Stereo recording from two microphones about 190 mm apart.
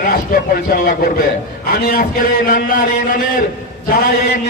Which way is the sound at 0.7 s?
50° left (ahead or behind).